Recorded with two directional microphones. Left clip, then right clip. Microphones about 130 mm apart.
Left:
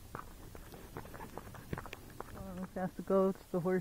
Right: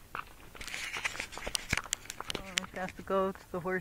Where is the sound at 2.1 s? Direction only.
30° right (ahead or behind).